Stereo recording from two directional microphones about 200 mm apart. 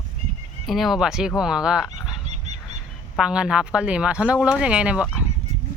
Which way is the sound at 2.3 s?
35° right (ahead or behind).